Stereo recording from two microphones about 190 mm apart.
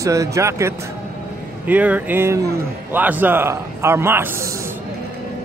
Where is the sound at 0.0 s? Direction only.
15° right (ahead or behind).